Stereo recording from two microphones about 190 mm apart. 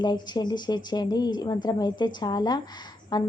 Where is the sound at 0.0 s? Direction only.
20° left (ahead or behind).